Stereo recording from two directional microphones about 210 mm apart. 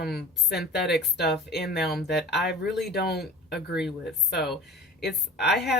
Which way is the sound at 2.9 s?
50° left (ahead or behind).